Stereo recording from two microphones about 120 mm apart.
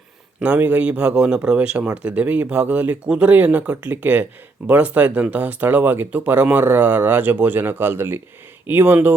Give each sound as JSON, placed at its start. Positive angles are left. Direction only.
{"t": 0.3, "sound": "a man's voice", "side_deg": -10}